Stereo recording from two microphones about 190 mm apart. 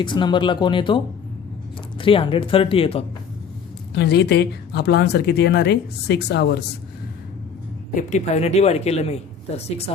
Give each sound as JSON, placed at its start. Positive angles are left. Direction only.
{"t": 0.0, "sound": "speech", "side_deg": 25}
{"t": 3.9, "sound": "speech", "side_deg": 60}
{"t": 7.9, "sound": "speech", "side_deg": 40}